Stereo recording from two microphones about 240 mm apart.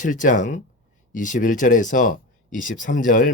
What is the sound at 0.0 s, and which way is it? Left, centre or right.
A man's voice, left.